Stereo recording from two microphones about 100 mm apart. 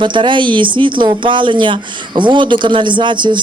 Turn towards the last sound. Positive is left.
turn(degrees=-50)  # may be behind; listen again after turning